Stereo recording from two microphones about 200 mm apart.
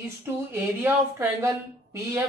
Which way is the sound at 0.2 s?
10° right (ahead or behind).